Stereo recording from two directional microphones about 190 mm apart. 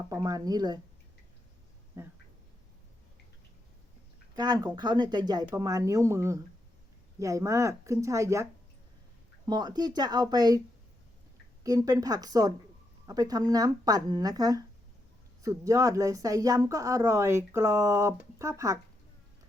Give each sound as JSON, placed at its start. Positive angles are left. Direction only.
{"t": 0.1, "sound": "speech", "side_deg": -20}
{"t": 4.4, "sound": "speech", "side_deg": -20}
{"t": 9.5, "sound": "speech", "side_deg": -20}
{"t": 11.6, "sound": "speech", "side_deg": -20}